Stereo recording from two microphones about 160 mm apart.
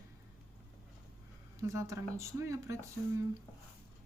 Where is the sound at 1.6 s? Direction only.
20° right (ahead or behind).